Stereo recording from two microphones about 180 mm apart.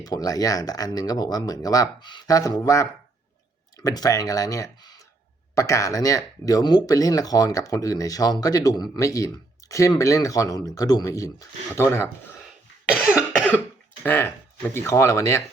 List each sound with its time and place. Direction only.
0.0 s speech: 20° left (ahead or behind)
13.0 s cough: 5° right (ahead or behind)
14.0 s speech: 10° left (ahead or behind)